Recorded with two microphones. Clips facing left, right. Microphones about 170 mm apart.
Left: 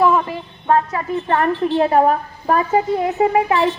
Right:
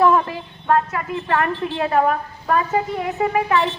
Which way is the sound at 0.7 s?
30° left (ahead or behind).